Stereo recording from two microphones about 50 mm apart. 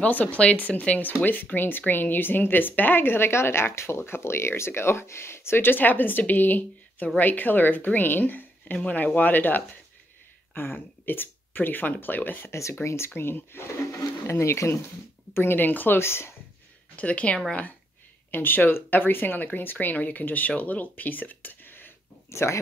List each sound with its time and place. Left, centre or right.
0.0 s speech: left
12.4 s speech: left
12.8 s speech: left
13.1 s speech: left
14.2 s speech: left
15.3 s speech: left
16.0 s speech: left
16.9 s speech: left
18.3 s speech: left
22.3 s speech: left